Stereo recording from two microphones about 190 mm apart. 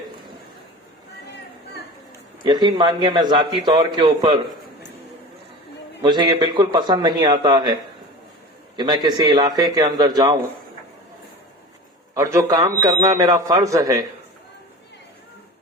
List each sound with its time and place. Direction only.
2.4 s a man's voice: 25° right (ahead or behind)
6.0 s a man's voice: 20° right (ahead or behind)
12.1 s a man's voice: 15° right (ahead or behind)